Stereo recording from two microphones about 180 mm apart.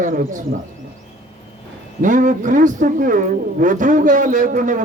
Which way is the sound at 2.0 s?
45° right (ahead or behind).